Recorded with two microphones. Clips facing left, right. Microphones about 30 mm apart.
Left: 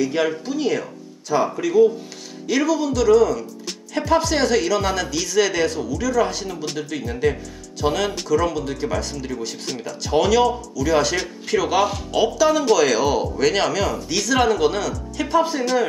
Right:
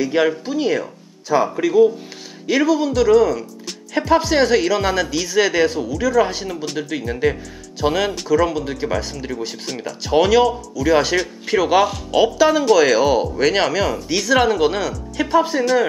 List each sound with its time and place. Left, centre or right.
0.0 s speech: centre